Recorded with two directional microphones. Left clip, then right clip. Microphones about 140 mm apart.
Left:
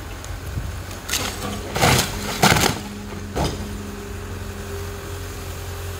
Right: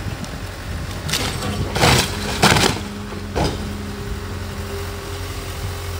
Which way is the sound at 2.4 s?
10° left (ahead or behind).